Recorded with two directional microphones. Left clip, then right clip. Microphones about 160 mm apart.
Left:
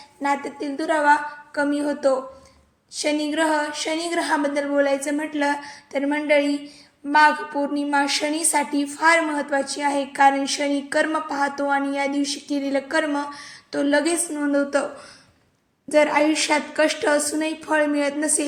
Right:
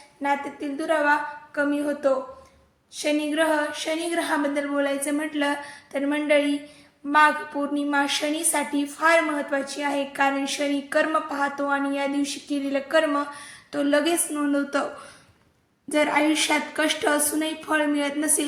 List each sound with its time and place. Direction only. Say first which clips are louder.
0.2 s a woman's voice: left 2 dB; 35° left (ahead or behind)
15.9 s a woman's voice: left 4 dB; 20° left (ahead or behind)